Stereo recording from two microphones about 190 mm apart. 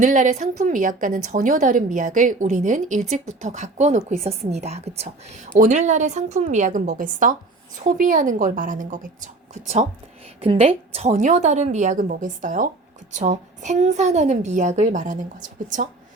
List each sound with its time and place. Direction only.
0.0 s a woman's voice: 40° right (ahead or behind)